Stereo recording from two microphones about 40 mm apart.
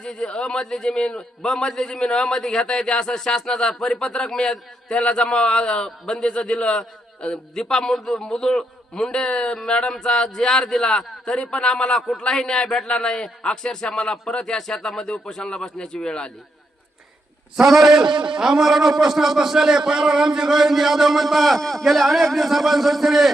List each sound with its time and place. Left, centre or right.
0.0 s a man's voice: left
7.5 s a man's voice: centre
11.3 s a man's voice: left
17.6 s a man's voice: centre